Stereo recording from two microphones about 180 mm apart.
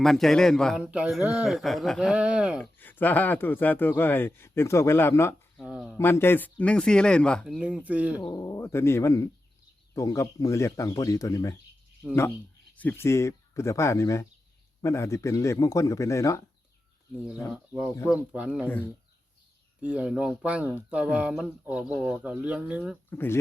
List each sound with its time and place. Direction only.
0.0 s a man's voice: centre (ahead or behind)
2.7 s speech: 10° left (ahead or behind)
5.5 s a man's voice: 5° right (ahead or behind)
6.0 s a man's voice: 10° left (ahead or behind); by 8.2 s 10° right (ahead or behind)
8.3 s speech: 20° left (ahead or behind)
12.0 s a man's voice: 5° right (ahead or behind)
12.7 s speech: 10° left (ahead or behind)
17.5 s speech: 5° right (ahead or behind)
19.8 s speech: 5° right (ahead or behind)
23.0 s speech: 10° left (ahead or behind)